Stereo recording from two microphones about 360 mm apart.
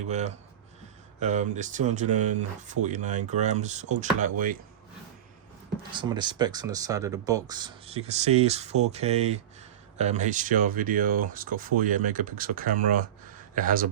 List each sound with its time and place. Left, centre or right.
0.1 s speech: centre
5.9 s speech: centre